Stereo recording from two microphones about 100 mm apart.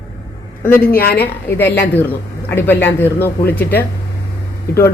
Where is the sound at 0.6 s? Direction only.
20° left (ahead or behind).